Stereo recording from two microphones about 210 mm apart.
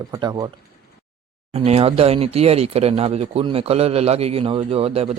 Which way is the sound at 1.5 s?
30° right (ahead or behind).